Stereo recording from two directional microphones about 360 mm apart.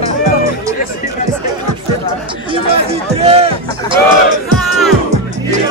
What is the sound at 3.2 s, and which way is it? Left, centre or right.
Music, centre.